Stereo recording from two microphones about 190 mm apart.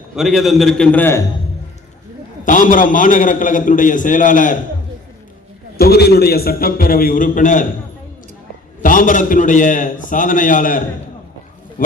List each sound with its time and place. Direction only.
0.2 s a man's voice: centre (ahead or behind)
2.4 s a man's voice: 40° left (ahead or behind)
5.7 s a man's voice: 55° left (ahead or behind)
8.8 s a man's voice: 45° left (ahead or behind)